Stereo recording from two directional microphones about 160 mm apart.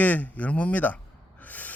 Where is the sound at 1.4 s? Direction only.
10° left (ahead or behind).